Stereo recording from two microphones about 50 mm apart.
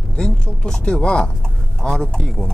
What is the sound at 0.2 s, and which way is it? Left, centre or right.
Speech, centre.